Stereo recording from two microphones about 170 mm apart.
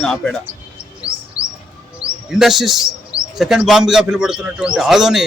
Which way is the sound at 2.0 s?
5° right (ahead or behind).